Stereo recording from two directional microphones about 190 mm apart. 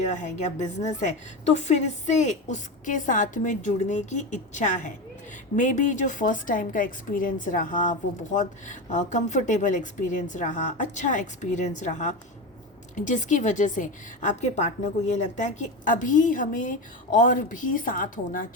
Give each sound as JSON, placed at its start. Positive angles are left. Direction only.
{"t": 0.1, "sound": "a woman's voice", "side_deg": 40}